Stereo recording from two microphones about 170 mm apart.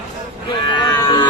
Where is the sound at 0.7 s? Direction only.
25° left (ahead or behind).